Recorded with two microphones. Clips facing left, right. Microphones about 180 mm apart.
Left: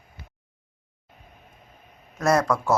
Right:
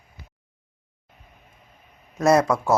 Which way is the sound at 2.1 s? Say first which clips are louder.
Right 3 dB; 20° right (ahead or behind).